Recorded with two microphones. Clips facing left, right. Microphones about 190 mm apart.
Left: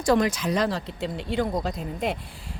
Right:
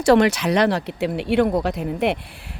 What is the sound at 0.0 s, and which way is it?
Speech, 75° right (ahead or behind).